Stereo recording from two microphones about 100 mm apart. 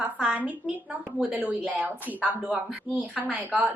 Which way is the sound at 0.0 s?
15° right (ahead or behind).